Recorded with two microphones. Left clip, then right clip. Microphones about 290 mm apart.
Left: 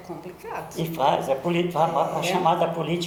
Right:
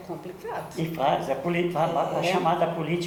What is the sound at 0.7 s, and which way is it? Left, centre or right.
Speech, left.